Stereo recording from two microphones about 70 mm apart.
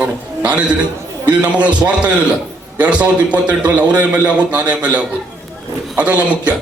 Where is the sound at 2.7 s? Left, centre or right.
Right.